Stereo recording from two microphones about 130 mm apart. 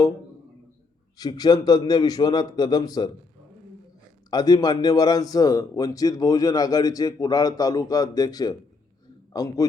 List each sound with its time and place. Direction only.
1.2 s a man's voice: 30° left (ahead or behind)
4.3 s a man's voice: 30° left (ahead or behind)